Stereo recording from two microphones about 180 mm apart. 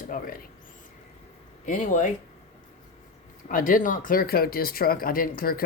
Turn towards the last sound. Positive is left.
turn(degrees=55)  # may be behind; listen again after turning